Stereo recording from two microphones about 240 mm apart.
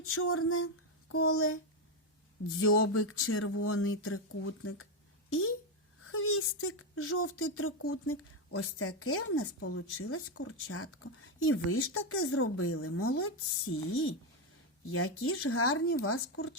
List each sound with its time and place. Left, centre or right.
0.0 s female singing: left
2.6 s speech: left